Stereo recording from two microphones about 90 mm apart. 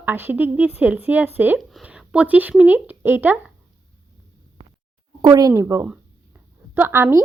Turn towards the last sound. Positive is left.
turn(degrees=-25)  # may be behind; listen again after turning